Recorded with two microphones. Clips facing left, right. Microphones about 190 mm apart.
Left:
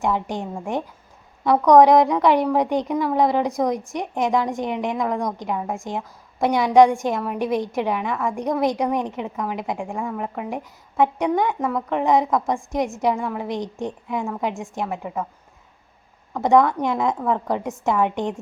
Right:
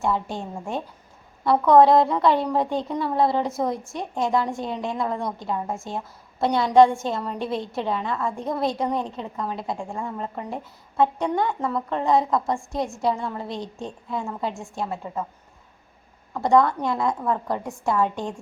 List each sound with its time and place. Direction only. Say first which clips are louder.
0.0 s a woman's voice: left 2 dB; 15° left (ahead or behind)
16.3 s a woman's voice: left 2 dB; 20° left (ahead or behind)